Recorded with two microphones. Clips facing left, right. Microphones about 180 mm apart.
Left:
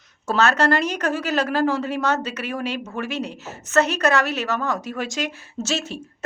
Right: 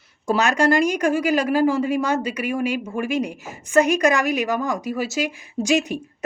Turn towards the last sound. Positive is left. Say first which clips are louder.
# right 6 dB
turn(degrees=-15)  # may be behind; listen again after turning